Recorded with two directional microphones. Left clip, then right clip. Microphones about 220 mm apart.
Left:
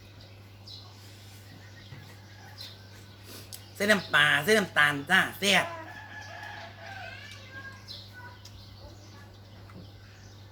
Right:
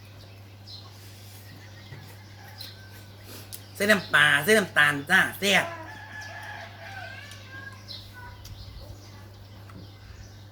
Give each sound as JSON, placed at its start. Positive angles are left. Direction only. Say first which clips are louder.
{"t": 3.8, "sound": "speech", "louder": "right 3 dB", "side_deg": 5}